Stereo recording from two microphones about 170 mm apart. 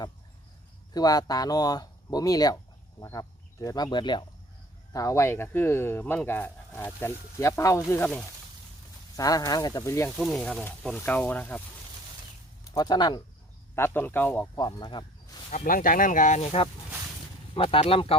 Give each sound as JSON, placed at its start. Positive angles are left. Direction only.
{"t": 0.9, "sound": "speech", "side_deg": 20}
{"t": 10.2, "sound": "speech", "side_deg": 0}
{"t": 12.7, "sound": "speech", "side_deg": 25}
{"t": 13.7, "sound": "speech", "side_deg": 15}
{"t": 14.6, "sound": "speech", "side_deg": 25}
{"t": 15.4, "sound": "speech", "side_deg": 50}